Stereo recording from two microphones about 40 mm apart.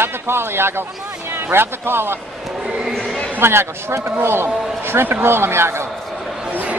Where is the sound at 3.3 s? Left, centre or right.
Right.